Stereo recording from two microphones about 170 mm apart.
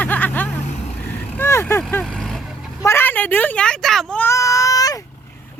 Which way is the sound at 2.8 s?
15° left (ahead or behind).